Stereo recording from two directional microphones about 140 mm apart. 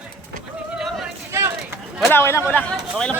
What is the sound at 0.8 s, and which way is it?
Yodeling, centre (ahead or behind).